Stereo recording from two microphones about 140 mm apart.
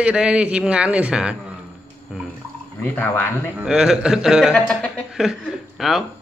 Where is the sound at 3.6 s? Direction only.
5° right (ahead or behind).